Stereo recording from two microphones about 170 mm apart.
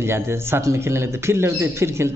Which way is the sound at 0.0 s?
15° right (ahead or behind).